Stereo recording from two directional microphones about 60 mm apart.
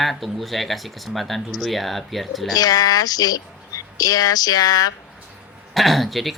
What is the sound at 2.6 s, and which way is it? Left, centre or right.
Speech, left.